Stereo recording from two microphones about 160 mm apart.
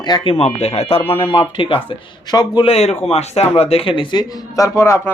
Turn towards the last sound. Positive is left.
turn(degrees=15)  # may be behind; listen again after turning